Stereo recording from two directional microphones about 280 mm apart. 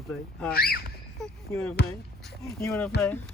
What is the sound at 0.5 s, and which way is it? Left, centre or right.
Speech, left.